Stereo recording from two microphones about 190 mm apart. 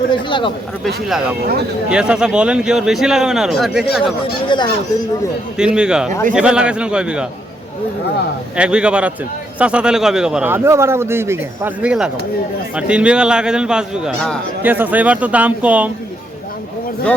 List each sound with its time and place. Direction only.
0.1 s speech: 25° left (ahead or behind)
1.0 s speech: 5° right (ahead or behind)
4.4 s fowl: 25° left (ahead or behind)
5.5 s speech: 5° right (ahead or behind)
8.5 s a man's voice: 5° right (ahead or behind)